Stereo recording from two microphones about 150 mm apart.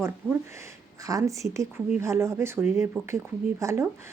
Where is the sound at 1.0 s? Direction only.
20° right (ahead or behind).